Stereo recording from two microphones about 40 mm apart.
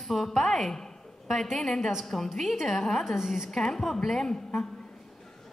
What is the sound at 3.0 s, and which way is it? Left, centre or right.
Speech, centre.